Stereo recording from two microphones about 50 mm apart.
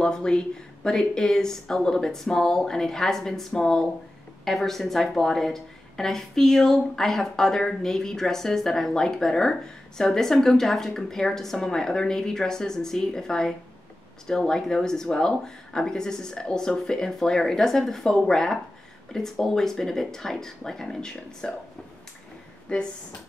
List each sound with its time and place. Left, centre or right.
0.0 s a woman's voice: centre
22.7 s speech: left